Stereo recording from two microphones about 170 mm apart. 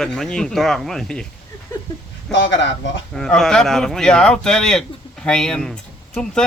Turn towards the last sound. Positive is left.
turn(degrees=5)  # may be behind; listen again after turning